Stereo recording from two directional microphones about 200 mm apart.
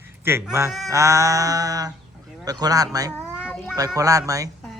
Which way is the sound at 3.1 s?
5° right (ahead or behind).